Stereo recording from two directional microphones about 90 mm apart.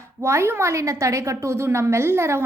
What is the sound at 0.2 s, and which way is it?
A woman's voice, 30° right (ahead or behind).